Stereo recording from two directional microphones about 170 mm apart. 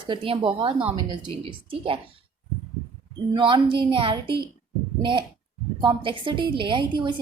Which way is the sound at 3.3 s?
30° right (ahead or behind).